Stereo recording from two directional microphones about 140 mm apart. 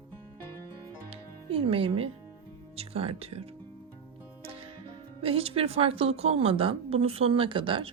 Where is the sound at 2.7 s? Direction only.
45° right (ahead or behind).